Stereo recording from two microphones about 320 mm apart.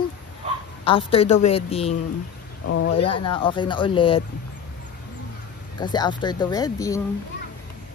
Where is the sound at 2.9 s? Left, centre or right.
Centre.